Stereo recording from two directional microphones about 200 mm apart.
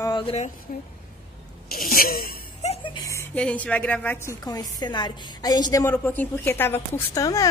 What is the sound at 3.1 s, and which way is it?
A woman's voice, 5° left (ahead or behind).